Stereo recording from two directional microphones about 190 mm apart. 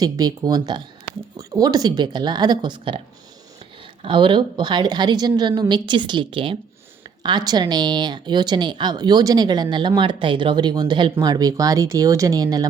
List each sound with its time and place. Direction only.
0.0 s speech: 20° right (ahead or behind)
4.0 s speech: 25° right (ahead or behind)